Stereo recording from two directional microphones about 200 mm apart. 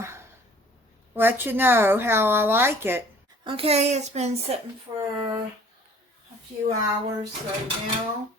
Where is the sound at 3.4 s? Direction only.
25° right (ahead or behind).